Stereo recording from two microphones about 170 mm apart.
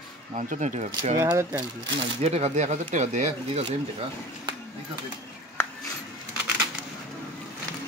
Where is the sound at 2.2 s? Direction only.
40° right (ahead or behind).